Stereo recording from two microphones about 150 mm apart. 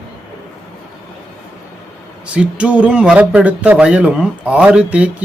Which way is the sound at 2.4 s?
10° right (ahead or behind).